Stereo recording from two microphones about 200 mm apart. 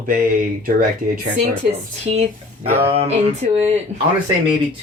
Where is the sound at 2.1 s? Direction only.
30° right (ahead or behind).